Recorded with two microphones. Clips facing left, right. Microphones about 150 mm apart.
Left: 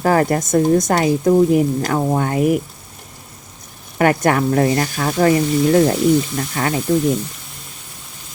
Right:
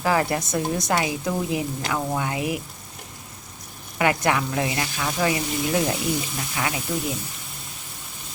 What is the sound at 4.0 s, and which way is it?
Speech, 45° left (ahead or behind).